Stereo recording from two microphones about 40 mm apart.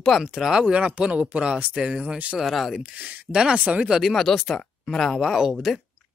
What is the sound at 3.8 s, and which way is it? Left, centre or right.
Speech, centre.